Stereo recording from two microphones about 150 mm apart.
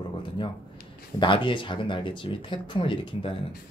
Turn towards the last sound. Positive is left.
turn(degrees=35)  # may be behind; listen again after turning